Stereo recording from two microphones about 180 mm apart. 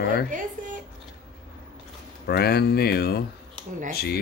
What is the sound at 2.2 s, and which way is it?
Speech, 60° left (ahead or behind).